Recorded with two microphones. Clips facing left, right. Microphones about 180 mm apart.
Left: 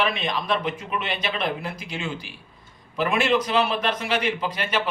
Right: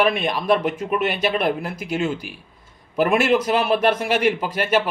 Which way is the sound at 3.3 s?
50° right (ahead or behind).